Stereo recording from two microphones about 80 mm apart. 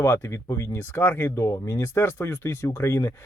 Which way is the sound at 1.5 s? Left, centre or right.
Left.